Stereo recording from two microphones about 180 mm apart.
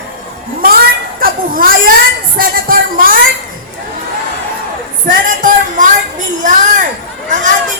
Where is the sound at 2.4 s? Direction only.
55° right (ahead or behind).